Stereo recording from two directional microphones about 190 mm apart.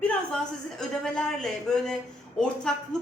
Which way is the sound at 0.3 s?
5° left (ahead or behind).